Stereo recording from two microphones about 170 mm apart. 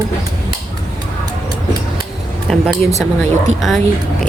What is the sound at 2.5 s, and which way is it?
Speech, 5° left (ahead or behind).